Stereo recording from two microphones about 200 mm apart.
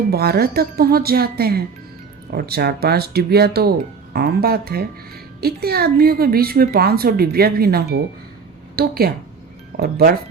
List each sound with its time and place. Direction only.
0.1 s a woman's voice: 50° right (ahead or behind)